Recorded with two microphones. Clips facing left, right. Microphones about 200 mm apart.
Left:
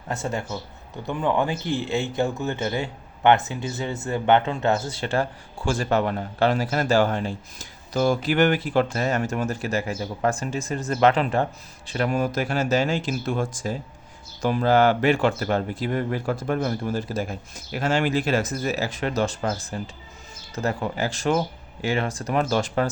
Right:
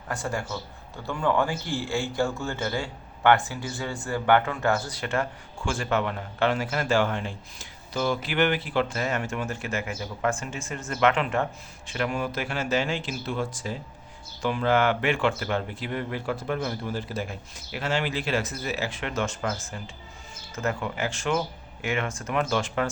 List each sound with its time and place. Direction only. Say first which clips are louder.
0.1 s a man's voice: left 2 dB; 20° left (ahead or behind); by 22.9 s 40° left (ahead or behind)